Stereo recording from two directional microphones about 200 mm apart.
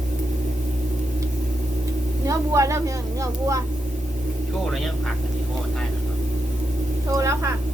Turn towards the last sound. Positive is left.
turn(degrees=-15)  # may be behind; listen again after turning